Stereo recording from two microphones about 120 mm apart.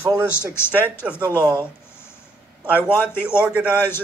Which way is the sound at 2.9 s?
20° left (ahead or behind).